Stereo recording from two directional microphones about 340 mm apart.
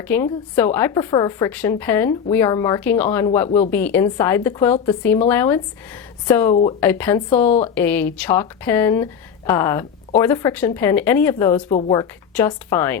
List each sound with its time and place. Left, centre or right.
0.1 s a woman's voice: centre
6.5 s speech: centre
6.7 s a woman's voice: centre